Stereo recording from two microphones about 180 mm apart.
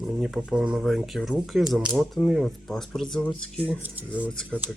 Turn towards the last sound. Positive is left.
turn(degrees=5)  # may be behind; listen again after turning